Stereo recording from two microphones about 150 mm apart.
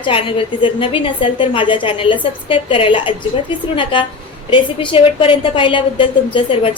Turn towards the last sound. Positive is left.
turn(degrees=35)  # may be behind; listen again after turning